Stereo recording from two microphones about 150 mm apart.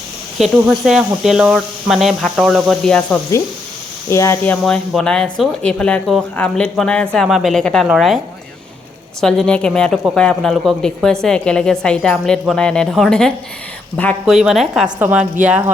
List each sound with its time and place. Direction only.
0.3 s speech: centre (ahead or behind)
4.1 s speech: 20° left (ahead or behind)
4.6 s speech: 5° left (ahead or behind)
9.2 s a woman's voice: 5° left (ahead or behind)